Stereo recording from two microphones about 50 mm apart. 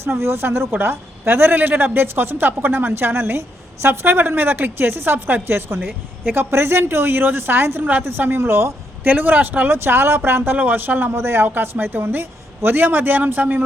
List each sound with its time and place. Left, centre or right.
0.0 s a woman's voice: right
7.8 s speech: right
8.0 s a woman's voice: right
8.4 s speech: right
9.0 s speech: right
9.7 s a woman's voice: right
11.2 s speech: right
11.4 s a woman's voice: right